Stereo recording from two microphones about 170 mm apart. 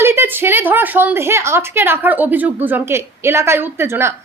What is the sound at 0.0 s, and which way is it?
A woman's voice, 15° right (ahead or behind).